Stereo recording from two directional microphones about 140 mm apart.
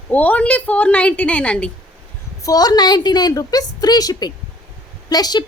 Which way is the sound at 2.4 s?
25° left (ahead or behind).